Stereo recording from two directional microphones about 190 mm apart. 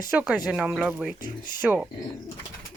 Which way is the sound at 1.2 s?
20° left (ahead or behind).